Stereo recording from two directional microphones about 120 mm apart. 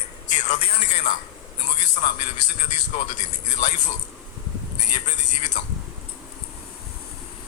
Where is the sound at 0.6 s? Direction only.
55° left (ahead or behind); by 2.1 s 70° left (ahead or behind).